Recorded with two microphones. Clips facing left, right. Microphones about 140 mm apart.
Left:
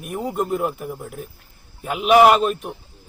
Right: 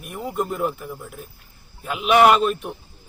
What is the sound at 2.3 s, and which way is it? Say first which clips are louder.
Speech: left 1 dB; 45° left (ahead or behind).